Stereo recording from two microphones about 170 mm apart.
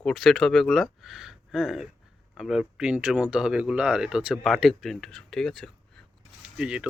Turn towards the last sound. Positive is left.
turn(degrees=-5)  # may be behind; listen again after turning